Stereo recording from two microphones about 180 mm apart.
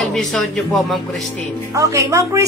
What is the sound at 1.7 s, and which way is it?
Speech, 20° right (ahead or behind).